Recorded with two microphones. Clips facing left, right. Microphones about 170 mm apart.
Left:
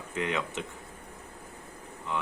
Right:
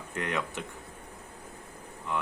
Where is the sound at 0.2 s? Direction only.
Centre (ahead or behind).